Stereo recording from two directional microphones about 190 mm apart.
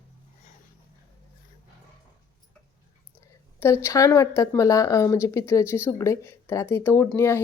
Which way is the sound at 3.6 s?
15° left (ahead or behind).